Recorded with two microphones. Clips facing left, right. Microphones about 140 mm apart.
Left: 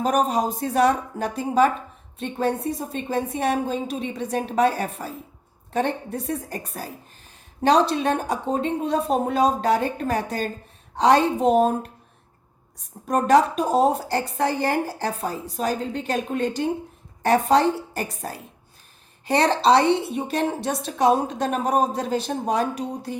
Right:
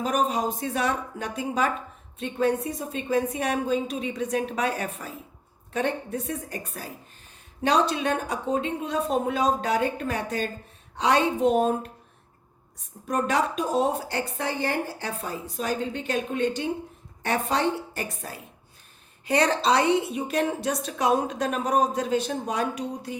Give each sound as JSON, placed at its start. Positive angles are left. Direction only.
{"t": 0.0, "sound": "a woman's voice", "side_deg": 40}
{"t": 13.1, "sound": "a woman's voice", "side_deg": 40}